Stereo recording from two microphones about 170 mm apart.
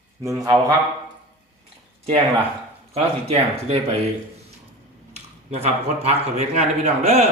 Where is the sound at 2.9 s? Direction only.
40° right (ahead or behind).